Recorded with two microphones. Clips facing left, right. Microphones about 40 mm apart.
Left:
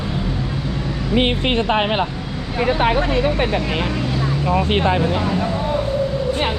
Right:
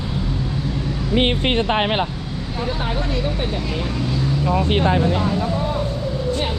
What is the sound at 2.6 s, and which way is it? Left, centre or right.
Speech, left.